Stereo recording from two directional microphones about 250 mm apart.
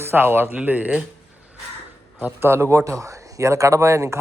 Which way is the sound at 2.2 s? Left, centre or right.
Centre.